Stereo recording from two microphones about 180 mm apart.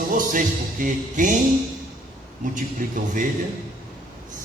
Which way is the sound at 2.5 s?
45° right (ahead or behind).